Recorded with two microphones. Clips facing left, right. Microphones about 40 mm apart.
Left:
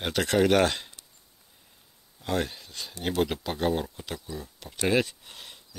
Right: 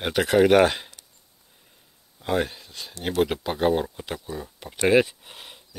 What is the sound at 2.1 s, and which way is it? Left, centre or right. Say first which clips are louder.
Speech: right 4 dB; centre.